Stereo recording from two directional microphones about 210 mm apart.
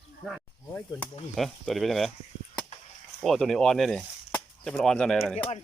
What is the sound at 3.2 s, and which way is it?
Speech, centre (ahead or behind).